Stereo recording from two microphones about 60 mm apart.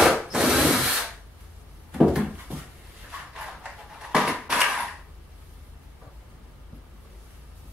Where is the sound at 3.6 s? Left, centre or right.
Centre.